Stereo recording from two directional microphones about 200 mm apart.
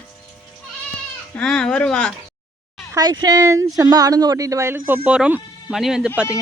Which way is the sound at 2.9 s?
20° right (ahead or behind).